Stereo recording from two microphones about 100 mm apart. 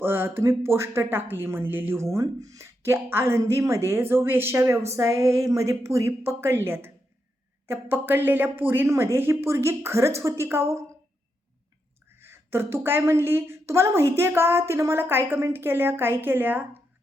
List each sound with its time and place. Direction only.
0.0 s a woman's voice: 20° right (ahead or behind)
12.2 s speech: 25° right (ahead or behind)